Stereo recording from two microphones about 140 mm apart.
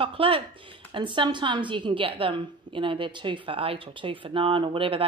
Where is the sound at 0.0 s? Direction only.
40° right (ahead or behind).